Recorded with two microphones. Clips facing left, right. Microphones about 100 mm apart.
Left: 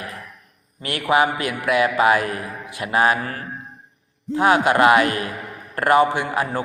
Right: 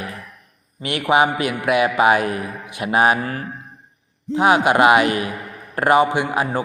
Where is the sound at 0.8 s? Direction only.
20° right (ahead or behind).